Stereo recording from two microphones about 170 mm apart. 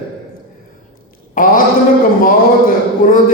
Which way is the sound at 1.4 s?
55° left (ahead or behind).